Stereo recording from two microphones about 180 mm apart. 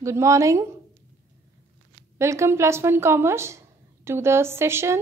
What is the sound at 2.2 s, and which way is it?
Speech, 15° right (ahead or behind).